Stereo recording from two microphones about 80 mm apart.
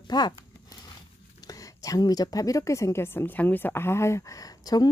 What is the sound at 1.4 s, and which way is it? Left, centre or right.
A woman's voice, left.